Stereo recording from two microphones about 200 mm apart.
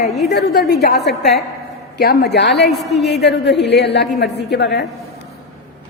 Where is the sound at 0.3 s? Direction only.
55° left (ahead or behind).